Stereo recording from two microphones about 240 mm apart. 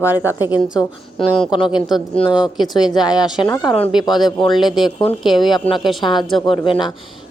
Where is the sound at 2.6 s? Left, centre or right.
Centre.